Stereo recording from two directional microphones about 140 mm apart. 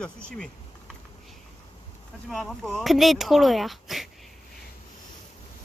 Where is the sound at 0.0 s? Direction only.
5° left (ahead or behind).